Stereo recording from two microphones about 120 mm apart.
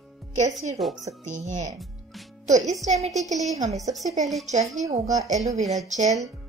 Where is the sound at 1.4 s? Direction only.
75° right (ahead or behind).